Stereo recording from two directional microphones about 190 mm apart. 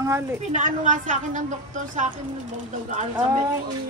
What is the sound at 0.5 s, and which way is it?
Speech, 40° right (ahead or behind).